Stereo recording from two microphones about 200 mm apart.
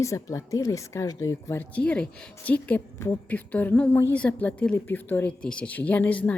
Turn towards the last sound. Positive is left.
turn(degrees=5)  # may be behind; listen again after turning